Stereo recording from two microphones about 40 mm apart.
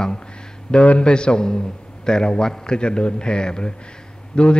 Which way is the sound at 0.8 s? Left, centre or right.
Left.